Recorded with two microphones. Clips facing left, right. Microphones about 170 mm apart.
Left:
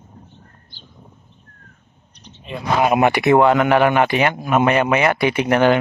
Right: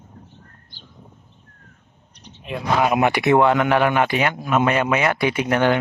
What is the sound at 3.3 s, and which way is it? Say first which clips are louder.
Speech: left 2 dB; 45° left (ahead or behind).